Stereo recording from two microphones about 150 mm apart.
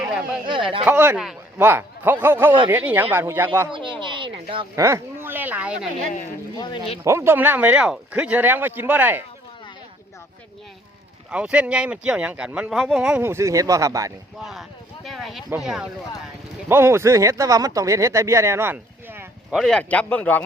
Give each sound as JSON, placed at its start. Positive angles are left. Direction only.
{"t": 0.0, "sound": "speech", "side_deg": -30}
{"t": 0.9, "sound": "speech", "side_deg": -10}
{"t": 4.0, "sound": "a sound", "side_deg": -35}
{"t": 4.7, "sound": "speech", "side_deg": -20}
{"t": 6.6, "sound": "speech", "side_deg": 30}
{"t": 7.0, "sound": "speech", "side_deg": -20}
{"t": 11.3, "sound": "speech", "side_deg": -5}
{"t": 15.0, "sound": "speech", "side_deg": 0}
{"t": 16.6, "sound": "speech", "side_deg": -15}
{"t": 19.5, "sound": "speech", "side_deg": 5}